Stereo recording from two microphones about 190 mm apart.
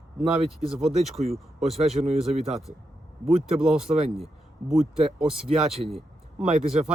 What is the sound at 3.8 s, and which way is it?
Speech, 30° right (ahead or behind).